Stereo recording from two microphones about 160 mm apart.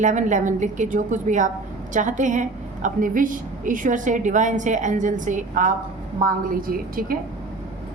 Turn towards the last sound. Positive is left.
turn(degrees=-65)  # may be behind; listen again after turning